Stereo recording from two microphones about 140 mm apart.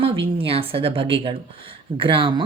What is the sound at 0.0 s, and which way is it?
Speech, 40° right (ahead or behind).